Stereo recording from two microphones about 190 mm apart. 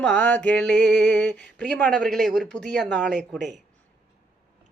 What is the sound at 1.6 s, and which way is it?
Mantra, 5° left (ahead or behind).